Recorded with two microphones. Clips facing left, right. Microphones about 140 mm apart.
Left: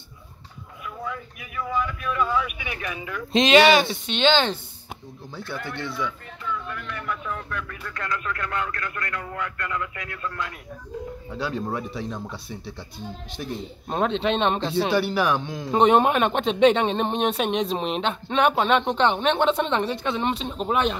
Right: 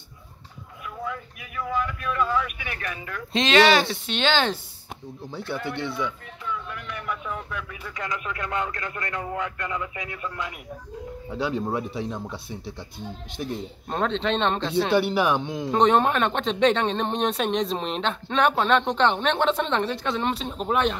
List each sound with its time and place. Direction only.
0.8 s vehicle: centre (ahead or behind)
3.3 s speech: 10° left (ahead or behind); by 4.6 s 5° right (ahead or behind)
5.3 s speech: 25° right (ahead or behind)
6.5 s speech: 10° right (ahead or behind)
13.4 s speech: 10° right (ahead or behind)
13.8 s speech: 10° left (ahead or behind)
15.0 s speech: 20° right (ahead or behind)
15.7 s speech: 10° left (ahead or behind)